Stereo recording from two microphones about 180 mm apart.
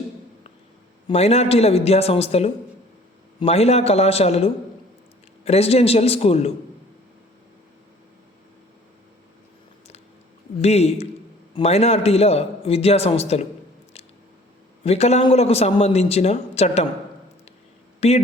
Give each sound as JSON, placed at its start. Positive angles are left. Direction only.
{"t": 1.0, "sound": "a man's voice", "side_deg": 35}
{"t": 10.6, "sound": "a man's voice", "side_deg": 35}
{"t": 14.8, "sound": "a man's voice", "side_deg": 35}
{"t": 18.0, "sound": "a man's voice", "side_deg": 35}